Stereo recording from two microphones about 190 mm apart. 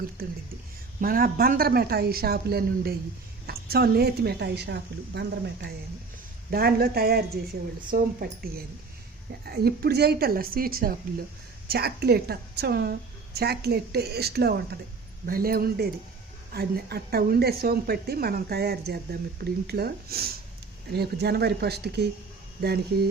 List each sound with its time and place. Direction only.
0.2 s a woman's voice: 50° right (ahead or behind)